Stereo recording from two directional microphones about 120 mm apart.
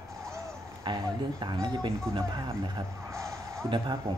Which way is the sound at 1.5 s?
35° right (ahead or behind).